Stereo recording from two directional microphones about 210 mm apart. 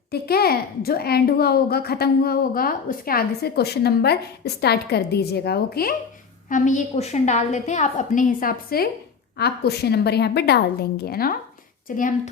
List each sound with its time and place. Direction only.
0.1 s a child's voice: 50° left (ahead or behind)
6.5 s a woman's voice: 35° left (ahead or behind)